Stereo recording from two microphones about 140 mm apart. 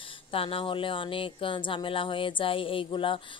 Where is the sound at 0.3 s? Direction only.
40° left (ahead or behind).